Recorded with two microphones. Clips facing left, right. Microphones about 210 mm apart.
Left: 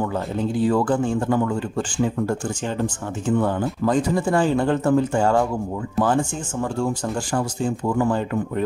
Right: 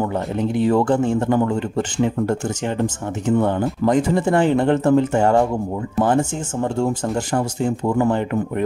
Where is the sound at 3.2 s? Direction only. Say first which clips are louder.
Right 3 dB; 20° right (ahead or behind).